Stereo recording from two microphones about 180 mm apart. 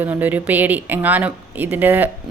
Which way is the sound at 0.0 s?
10° right (ahead or behind).